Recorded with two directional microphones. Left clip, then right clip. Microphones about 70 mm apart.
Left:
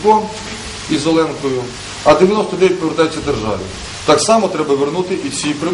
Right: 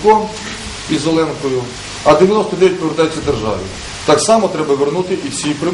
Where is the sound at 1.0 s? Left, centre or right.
Centre.